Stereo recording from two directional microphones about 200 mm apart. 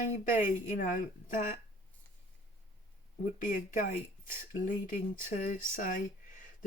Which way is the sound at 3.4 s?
40° left (ahead or behind).